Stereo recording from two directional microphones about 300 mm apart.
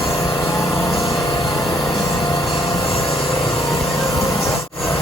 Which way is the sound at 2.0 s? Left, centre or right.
Centre.